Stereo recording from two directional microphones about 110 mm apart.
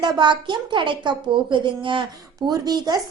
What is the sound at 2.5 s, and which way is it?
Speech, 40° right (ahead or behind).